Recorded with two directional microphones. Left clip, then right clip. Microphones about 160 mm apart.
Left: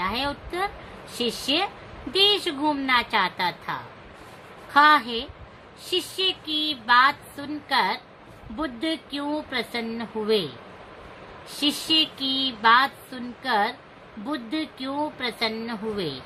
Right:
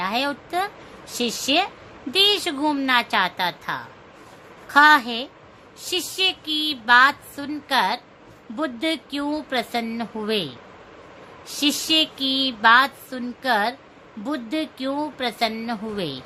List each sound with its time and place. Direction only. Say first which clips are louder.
0.0 s a woman's voice: right 3 dB; 70° right (ahead or behind)
11.5 s speech: right 2 dB; 70° right (ahead or behind)